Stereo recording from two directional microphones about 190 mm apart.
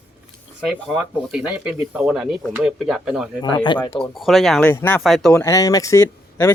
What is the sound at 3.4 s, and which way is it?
Speech, 25° left (ahead or behind).